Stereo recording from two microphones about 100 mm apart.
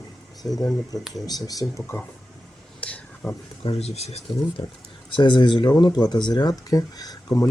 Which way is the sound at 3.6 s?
90° left.